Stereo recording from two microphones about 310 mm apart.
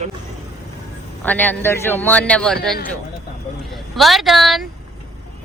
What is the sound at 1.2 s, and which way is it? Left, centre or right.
A woman's voice, centre.